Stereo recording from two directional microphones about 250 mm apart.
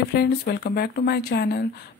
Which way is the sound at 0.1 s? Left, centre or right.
Left.